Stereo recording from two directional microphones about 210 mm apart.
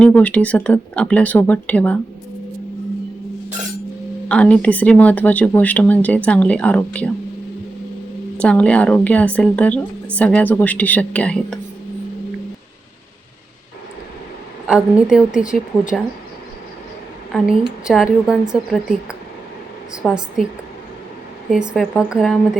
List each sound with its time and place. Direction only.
0.0 s a woman's voice: 5° left (ahead or behind)
4.3 s a woman's voice: 5° left (ahead or behind)
8.4 s a woman's voice: 5° left (ahead or behind)
14.7 s a woman's voice: 5° right (ahead or behind)
17.8 s a woman's voice: 5° right (ahead or behind)
21.5 s a woman's voice: centre (ahead or behind)